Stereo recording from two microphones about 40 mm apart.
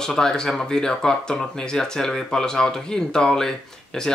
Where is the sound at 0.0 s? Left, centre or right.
Centre.